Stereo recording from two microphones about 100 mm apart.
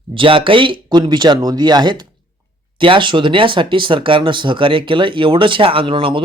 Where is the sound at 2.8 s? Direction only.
55° right (ahead or behind).